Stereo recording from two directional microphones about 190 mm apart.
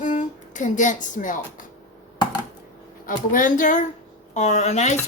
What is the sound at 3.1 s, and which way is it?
A woman's voice, 45° left (ahead or behind).